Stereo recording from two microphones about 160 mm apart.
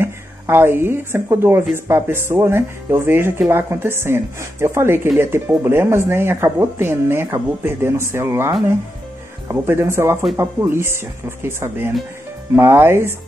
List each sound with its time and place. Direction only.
0.0 s a woman's voice: 15° right (ahead or behind)